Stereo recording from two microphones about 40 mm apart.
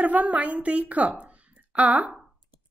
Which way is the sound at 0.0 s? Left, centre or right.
Right.